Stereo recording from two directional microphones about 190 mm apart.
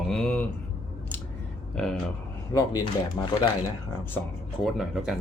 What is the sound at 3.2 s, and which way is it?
Speech, 15° left (ahead or behind).